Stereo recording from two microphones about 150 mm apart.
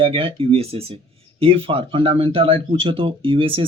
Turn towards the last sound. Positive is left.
turn(degrees=-35)  # may be behind; listen again after turning